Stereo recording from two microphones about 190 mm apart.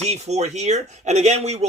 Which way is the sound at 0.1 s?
35° right (ahead or behind).